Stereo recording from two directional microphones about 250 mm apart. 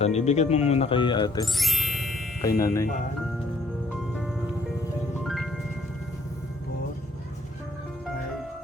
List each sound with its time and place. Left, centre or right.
0.0 s speech: left
1.5 s music: centre
2.4 s speech: centre
5.2 s music: centre